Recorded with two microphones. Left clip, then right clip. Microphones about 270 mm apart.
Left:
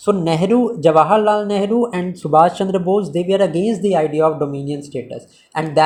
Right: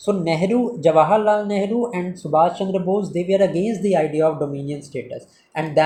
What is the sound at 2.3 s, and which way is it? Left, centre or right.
Speech, left.